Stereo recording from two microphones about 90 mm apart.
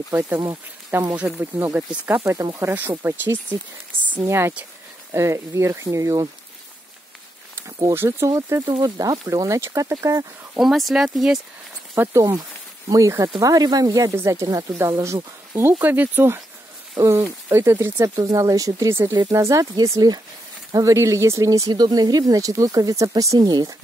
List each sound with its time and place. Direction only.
0.1 s speech: 25° right (ahead or behind)
7.9 s speech: 25° right (ahead or behind)
8.8 s speech: 45° right (ahead or behind)
10.6 s speech: 5° right (ahead or behind)
11.9 s speech: 35° right (ahead or behind)
15.5 s speech: 25° right (ahead or behind); by 23.8 s 45° right (ahead or behind)